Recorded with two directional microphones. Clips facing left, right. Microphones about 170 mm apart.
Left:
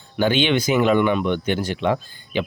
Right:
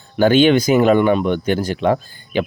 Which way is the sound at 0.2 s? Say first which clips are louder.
Right 7 dB; 45° right (ahead or behind).